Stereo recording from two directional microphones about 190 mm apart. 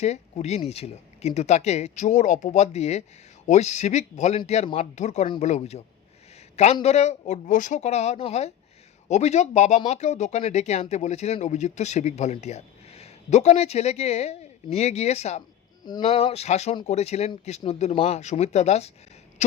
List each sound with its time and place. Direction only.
0.0 s speech: 35° left (ahead or behind)
6.8 s speech: 35° left (ahead or behind)
15.8 s speech: 25° left (ahead or behind)